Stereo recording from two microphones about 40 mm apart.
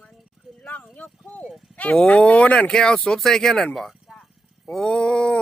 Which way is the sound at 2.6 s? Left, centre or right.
Centre.